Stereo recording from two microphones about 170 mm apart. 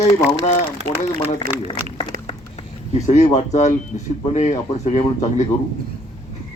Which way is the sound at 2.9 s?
45° left (ahead or behind).